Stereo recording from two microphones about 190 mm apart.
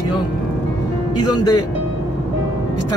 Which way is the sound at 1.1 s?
20° left (ahead or behind).